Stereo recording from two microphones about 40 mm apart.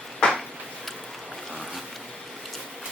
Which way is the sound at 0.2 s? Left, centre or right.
Left.